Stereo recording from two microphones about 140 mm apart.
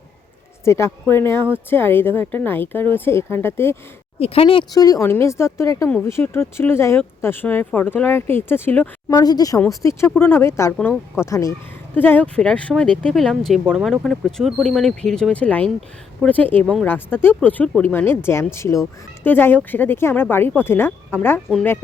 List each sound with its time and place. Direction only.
0.6 s a woman's voice: 20° left (ahead or behind)
4.2 s speech: 45° left (ahead or behind)
4.7 s a woman's voice: 25° left (ahead or behind)
9.0 s a woman's voice: 30° left (ahead or behind)